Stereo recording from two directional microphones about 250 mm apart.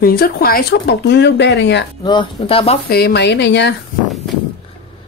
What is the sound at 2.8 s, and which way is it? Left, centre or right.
Speech, left.